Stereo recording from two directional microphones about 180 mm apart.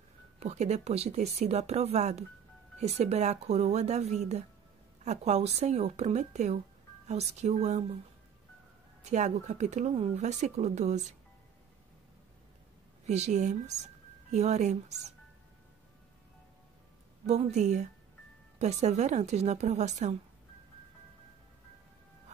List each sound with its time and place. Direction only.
0.4 s speech: 35° right (ahead or behind)
9.1 s speech: 40° right (ahead or behind)
13.0 s speech: 40° right (ahead or behind)
17.3 s speech: 40° right (ahead or behind)